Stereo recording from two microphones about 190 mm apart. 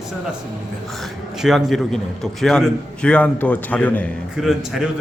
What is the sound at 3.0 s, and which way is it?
A man's voice, 5° left (ahead or behind).